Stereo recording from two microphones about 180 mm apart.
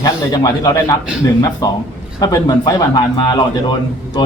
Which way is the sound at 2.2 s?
20° left (ahead or behind).